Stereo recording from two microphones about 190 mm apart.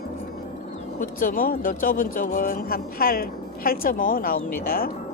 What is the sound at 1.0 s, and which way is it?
Speech, 45° left (ahead or behind).